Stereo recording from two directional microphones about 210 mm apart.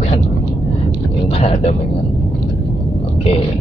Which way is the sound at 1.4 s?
30° left (ahead or behind).